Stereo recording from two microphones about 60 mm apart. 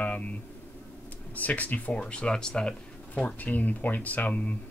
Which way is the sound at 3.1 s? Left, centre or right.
Left.